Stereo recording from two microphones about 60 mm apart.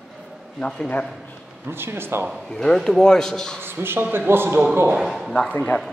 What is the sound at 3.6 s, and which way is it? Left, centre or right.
A man's voice, right.